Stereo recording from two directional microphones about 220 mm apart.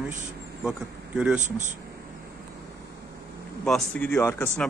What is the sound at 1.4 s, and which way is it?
Speech, 35° right (ahead or behind).